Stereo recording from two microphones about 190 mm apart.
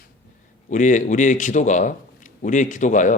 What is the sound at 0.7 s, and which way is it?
A man's voice, 40° left (ahead or behind).